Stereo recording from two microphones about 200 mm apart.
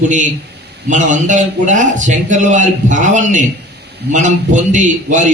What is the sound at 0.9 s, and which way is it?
A man's voice, 40° right (ahead or behind).